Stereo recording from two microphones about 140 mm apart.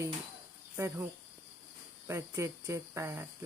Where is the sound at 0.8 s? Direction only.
15° right (ahead or behind).